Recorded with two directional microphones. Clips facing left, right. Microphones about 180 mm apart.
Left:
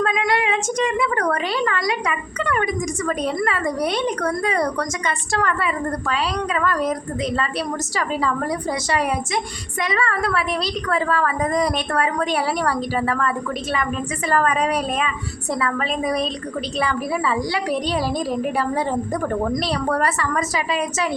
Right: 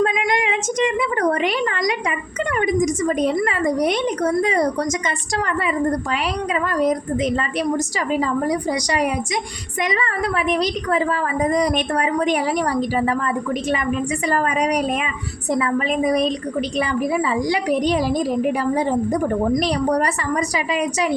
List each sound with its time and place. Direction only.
0.0 s a woman's voice: 15° right (ahead or behind)